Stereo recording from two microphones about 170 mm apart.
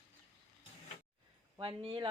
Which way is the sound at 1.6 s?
30° right (ahead or behind).